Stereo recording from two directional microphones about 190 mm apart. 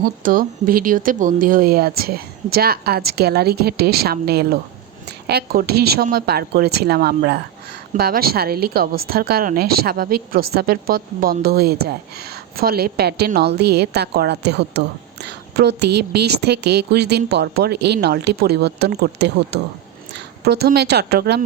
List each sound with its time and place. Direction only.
0.0 s a woman's voice: 45° right (ahead or behind)